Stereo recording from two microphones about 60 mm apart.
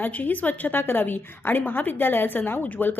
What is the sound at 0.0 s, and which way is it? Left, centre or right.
A woman's voice, left.